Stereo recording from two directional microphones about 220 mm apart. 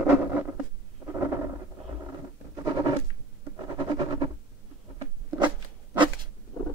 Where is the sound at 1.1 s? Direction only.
10° right (ahead or behind).